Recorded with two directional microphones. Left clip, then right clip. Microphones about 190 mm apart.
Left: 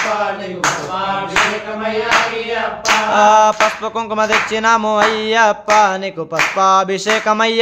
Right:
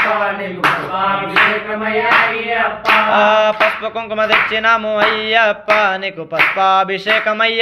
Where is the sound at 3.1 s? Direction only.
30° left (ahead or behind).